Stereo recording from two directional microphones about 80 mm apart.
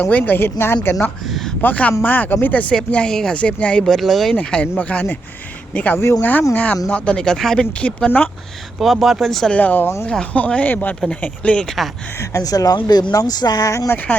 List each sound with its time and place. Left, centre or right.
0.0 s speech: centre
1.3 s speech: centre
1.6 s speech: left
3.9 s speech: centre
4.4 s speech: centre
8.8 s speech: centre
9.5 s speech: centre
12.2 s speech: left
12.7 s speech: left
13.9 s speech: left